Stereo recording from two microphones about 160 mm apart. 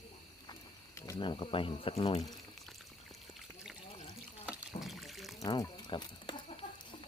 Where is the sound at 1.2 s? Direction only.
30° left (ahead or behind).